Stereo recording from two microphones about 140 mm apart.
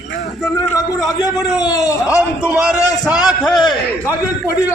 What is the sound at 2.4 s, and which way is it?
A man's voice, 10° right (ahead or behind).